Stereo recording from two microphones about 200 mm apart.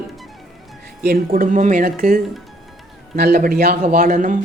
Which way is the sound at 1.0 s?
50° right (ahead or behind).